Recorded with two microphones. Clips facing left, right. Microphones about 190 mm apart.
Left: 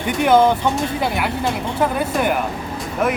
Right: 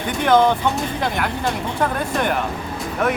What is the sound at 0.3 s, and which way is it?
Speech, 5° left (ahead or behind).